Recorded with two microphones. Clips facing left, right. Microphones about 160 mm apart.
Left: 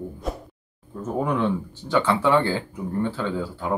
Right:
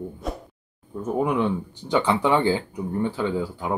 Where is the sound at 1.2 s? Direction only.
15° right (ahead or behind).